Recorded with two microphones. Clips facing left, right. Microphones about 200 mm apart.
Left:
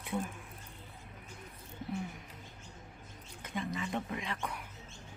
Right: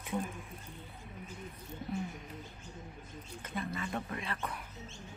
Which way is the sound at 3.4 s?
15° left (ahead or behind).